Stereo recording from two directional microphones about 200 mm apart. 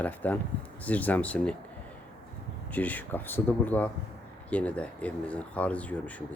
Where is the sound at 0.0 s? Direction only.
10° left (ahead or behind).